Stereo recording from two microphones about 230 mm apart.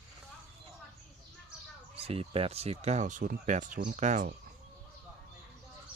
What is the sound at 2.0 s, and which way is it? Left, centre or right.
Speech, right.